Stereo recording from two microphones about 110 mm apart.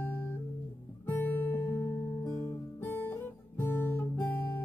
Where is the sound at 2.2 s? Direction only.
30° left (ahead or behind).